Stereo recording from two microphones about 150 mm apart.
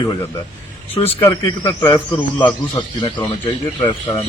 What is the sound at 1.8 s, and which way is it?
A man's voice, 30° left (ahead or behind).